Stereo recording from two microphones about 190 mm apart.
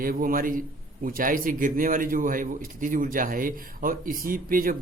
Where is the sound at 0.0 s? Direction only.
50° right (ahead or behind).